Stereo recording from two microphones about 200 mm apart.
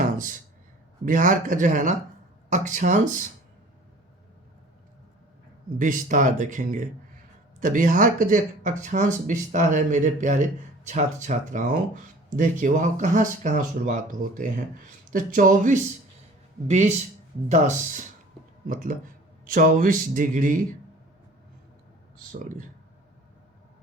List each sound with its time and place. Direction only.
1.0 s speech: 40° right (ahead or behind)
5.8 s speech: 40° right (ahead or behind)
22.2 s speech: 45° right (ahead or behind)